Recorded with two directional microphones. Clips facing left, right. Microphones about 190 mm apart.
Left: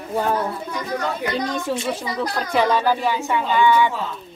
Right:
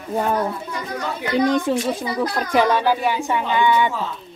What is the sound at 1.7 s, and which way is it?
Speech, 20° right (ahead or behind).